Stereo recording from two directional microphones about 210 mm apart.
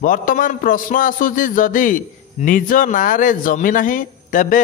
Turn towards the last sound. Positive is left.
turn(degrees=40)  # may be behind; listen again after turning